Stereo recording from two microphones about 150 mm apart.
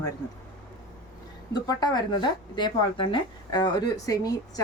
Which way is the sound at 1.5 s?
25° left (ahead or behind).